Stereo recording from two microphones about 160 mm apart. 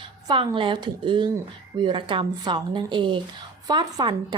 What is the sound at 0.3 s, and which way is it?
A woman's voice, 30° right (ahead or behind).